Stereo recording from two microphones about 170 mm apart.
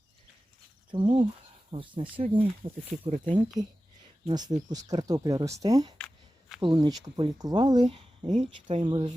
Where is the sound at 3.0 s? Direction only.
45° right (ahead or behind).